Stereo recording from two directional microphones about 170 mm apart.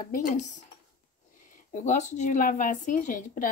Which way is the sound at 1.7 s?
50° left (ahead or behind).